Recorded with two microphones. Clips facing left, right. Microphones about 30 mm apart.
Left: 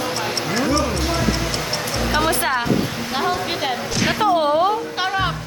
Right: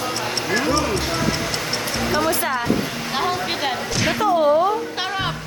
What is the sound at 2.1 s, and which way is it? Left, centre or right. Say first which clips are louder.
Music: left 2 dB; left.